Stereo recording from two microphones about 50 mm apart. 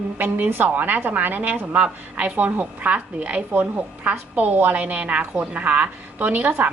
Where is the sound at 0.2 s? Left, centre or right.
Right.